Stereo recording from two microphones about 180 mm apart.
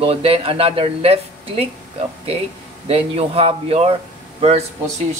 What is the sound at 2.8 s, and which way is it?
Speech, 30° right (ahead or behind).